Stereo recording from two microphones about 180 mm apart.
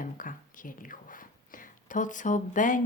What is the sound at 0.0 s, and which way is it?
Speech, 50° left (ahead or behind).